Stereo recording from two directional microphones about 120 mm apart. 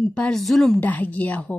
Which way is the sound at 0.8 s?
15° left (ahead or behind).